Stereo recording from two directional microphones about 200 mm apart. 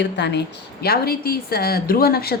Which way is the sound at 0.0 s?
60° left (ahead or behind).